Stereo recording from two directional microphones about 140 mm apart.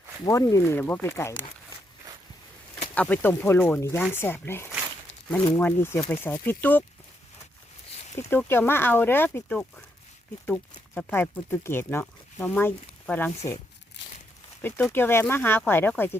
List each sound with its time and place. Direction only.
0.3 s speech: 25° left (ahead or behind)
2.9 s speech: 10° left (ahead or behind)
8.3 s speech: 15° left (ahead or behind)
14.6 s speech: 15° left (ahead or behind)